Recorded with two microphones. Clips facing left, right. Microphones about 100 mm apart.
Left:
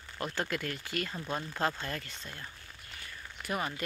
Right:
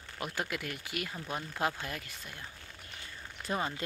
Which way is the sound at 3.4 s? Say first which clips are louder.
Right 1 dB; 25° right (ahead or behind).